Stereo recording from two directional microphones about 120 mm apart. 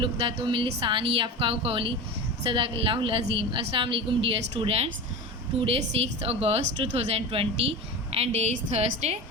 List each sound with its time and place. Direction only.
0.0 s a woman's voice: 45° right (ahead or behind); by 9.1 s 65° right (ahead or behind)